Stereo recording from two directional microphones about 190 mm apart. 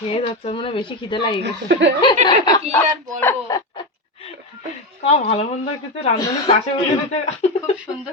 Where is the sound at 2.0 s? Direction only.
20° left (ahead or behind).